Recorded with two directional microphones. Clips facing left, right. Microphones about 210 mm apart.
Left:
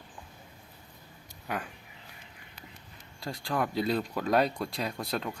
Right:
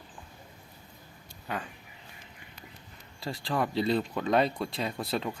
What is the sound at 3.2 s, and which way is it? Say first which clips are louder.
Speech: right 1 dB; centre (ahead or behind).